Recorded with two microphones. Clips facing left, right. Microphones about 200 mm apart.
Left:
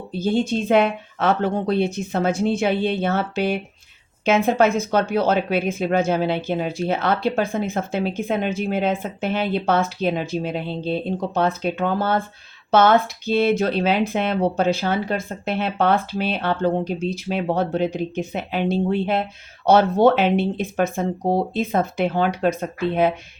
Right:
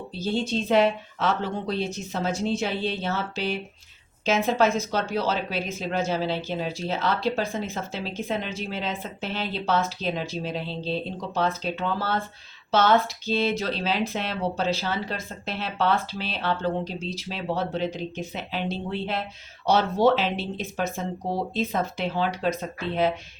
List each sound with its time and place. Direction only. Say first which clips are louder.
0.1 s speech: left 6 dB; 50° left (ahead or behind)